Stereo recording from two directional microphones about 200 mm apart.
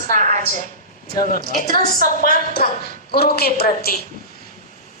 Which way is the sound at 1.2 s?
45° left (ahead or behind).